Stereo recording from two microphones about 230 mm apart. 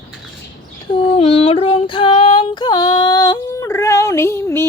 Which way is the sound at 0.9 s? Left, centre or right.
Left.